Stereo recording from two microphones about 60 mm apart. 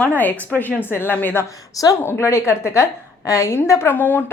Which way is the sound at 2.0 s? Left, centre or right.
Left.